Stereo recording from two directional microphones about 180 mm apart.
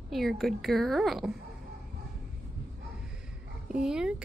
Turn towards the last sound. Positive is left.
turn(degrees=-5)  # may be behind; listen again after turning